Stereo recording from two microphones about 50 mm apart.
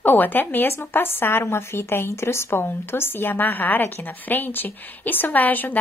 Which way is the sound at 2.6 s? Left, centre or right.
Left.